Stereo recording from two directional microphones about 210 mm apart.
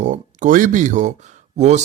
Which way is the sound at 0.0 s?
35° right (ahead or behind).